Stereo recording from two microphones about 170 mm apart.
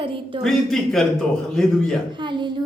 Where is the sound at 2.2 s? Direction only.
30° right (ahead or behind).